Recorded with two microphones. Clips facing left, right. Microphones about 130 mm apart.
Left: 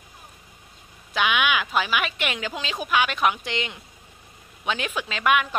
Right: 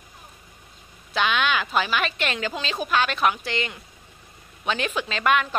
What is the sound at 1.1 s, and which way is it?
A woman's voice, 10° left (ahead or behind).